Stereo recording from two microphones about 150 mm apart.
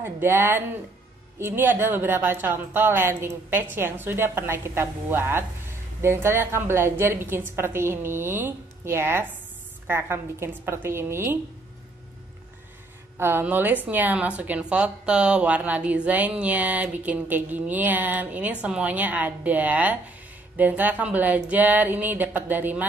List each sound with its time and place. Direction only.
0.0 s a woman's voice: 15° right (ahead or behind)
13.2 s a woman's voice: 15° right (ahead or behind)